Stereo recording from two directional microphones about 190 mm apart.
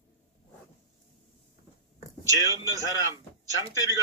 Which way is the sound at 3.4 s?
15° right (ahead or behind).